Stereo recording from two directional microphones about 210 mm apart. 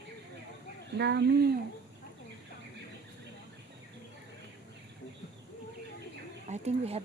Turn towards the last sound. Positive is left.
turn(degrees=-30)  # may be behind; listen again after turning